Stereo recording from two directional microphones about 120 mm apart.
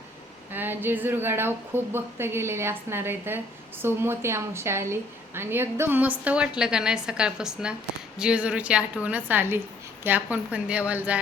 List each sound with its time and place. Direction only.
0.5 s a woman's voice: 15° right (ahead or behind)